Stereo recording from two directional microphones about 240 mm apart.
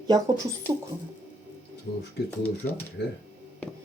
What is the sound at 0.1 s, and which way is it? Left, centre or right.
Speech, centre.